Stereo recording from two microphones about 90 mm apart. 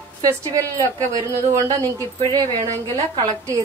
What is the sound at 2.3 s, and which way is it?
Speech, 40° right (ahead or behind).